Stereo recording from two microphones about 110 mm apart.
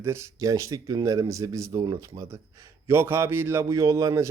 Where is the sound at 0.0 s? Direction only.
25° right (ahead or behind).